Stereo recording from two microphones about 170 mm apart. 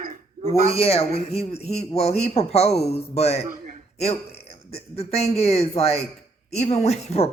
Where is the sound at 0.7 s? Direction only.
35° left (ahead or behind).